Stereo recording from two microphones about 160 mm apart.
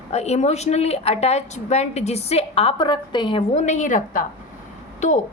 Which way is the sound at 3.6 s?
50° left (ahead or behind).